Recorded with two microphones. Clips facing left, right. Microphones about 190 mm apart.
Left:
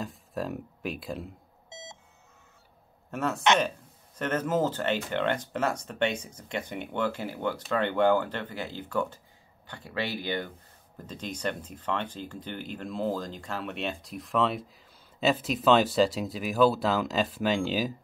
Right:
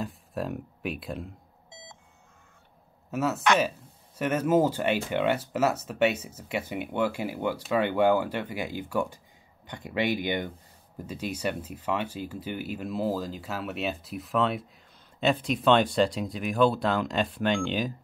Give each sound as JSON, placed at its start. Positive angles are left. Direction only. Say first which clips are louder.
{"t": 0.0, "sound": "speech", "louder": "right 1 dB", "side_deg": 0}
{"t": 1.7, "sound": "beep", "louder": "left 4 dB", "side_deg": 20}
{"t": 3.1, "sound": "speech", "louder": "right 1 dB", "side_deg": -5}